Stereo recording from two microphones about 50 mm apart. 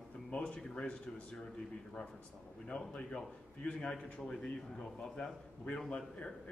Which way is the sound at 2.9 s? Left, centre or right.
Centre.